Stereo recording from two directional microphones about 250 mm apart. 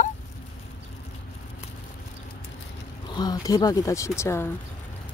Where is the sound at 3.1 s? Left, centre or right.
Centre.